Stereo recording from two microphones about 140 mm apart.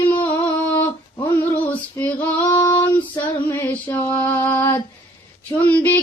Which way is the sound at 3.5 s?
15° left (ahead or behind).